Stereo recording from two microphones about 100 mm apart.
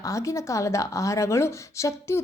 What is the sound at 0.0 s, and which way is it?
A woman's voice, 35° left (ahead or behind).